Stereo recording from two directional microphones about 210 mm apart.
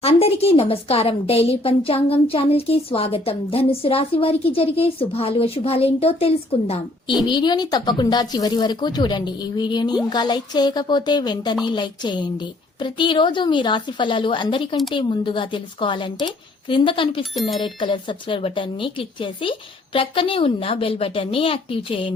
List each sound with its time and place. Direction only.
0.0 s a woman's voice: 25° left (ahead or behind)